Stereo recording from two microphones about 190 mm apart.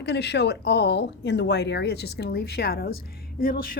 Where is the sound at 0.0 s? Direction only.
60° left (ahead or behind).